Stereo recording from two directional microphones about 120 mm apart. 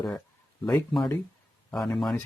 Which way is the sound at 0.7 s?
5° left (ahead or behind).